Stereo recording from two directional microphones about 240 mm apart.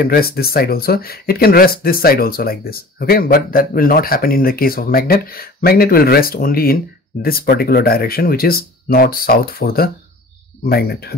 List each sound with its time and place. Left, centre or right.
0.0 s speech: left